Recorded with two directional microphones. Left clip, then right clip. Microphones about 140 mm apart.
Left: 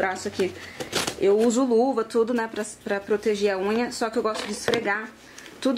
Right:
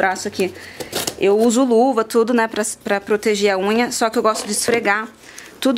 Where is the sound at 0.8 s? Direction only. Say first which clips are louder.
Right 2 dB; 10° right (ahead or behind).